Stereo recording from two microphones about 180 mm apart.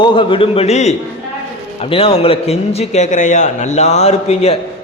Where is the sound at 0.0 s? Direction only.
30° left (ahead or behind).